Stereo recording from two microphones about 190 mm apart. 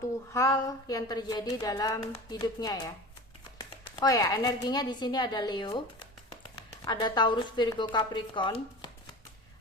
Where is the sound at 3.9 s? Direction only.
20° left (ahead or behind).